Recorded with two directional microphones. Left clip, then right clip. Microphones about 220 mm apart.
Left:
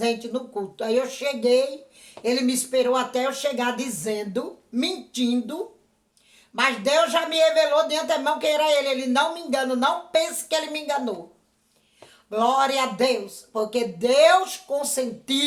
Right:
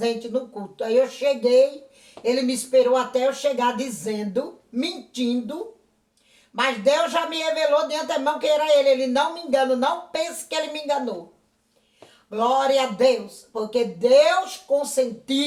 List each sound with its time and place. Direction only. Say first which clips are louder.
0.0 s a man's voice: right 1 dB; 40° left (ahead or behind)
6.6 s a man's voice: even; 40° left (ahead or behind)
12.3 s a man's voice: right 1 dB; 40° left (ahead or behind)